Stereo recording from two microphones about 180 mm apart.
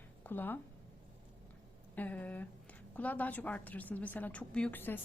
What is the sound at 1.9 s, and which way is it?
A woman's voice, 10° left (ahead or behind).